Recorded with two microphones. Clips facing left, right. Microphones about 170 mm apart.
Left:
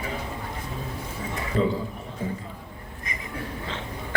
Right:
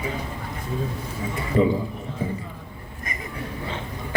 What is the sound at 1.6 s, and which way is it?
Mantra, 15° right (ahead or behind).